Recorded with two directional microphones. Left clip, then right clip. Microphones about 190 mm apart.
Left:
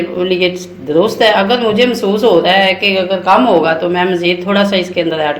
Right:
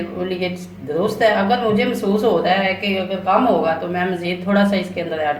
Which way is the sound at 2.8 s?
40° left (ahead or behind).